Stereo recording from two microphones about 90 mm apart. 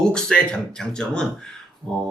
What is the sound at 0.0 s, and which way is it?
Speech, 10° left (ahead or behind).